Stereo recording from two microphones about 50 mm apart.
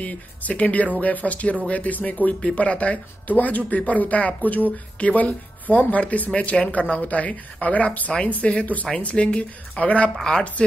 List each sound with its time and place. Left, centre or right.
0.0 s speech: left